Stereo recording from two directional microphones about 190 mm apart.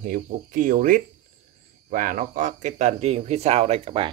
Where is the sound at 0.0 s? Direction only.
45° right (ahead or behind).